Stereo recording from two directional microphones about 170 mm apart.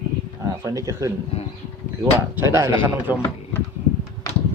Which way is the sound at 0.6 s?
20° right (ahead or behind).